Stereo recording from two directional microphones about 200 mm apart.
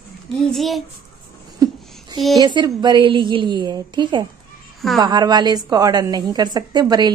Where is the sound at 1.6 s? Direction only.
20° right (ahead or behind).